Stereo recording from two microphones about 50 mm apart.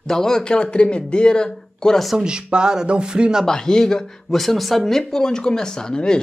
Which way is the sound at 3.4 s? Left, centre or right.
Centre.